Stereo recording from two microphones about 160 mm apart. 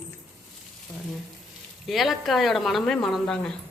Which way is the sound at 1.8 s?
Centre (ahead or behind).